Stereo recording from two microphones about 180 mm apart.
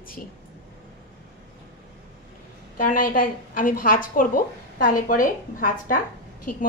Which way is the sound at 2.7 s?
50° left (ahead or behind).